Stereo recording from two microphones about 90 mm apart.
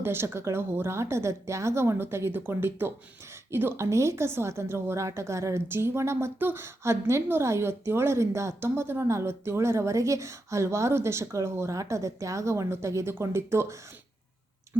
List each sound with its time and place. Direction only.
0.0 s a woman's voice: 25° right (ahead or behind)